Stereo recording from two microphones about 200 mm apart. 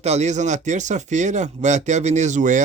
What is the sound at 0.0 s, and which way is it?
Speech, 35° right (ahead or behind).